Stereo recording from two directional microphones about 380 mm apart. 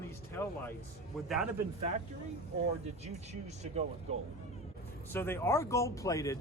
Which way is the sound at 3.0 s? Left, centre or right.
Centre.